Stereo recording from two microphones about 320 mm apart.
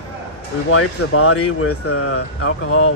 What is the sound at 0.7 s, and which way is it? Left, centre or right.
Speech, left.